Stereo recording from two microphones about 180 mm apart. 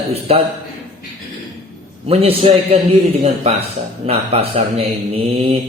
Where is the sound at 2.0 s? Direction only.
30° right (ahead or behind).